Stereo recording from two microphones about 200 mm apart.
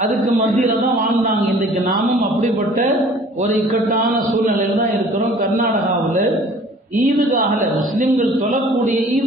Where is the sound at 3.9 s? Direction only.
45° right (ahead or behind).